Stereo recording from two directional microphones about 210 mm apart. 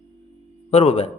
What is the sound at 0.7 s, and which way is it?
Speech, 30° left (ahead or behind).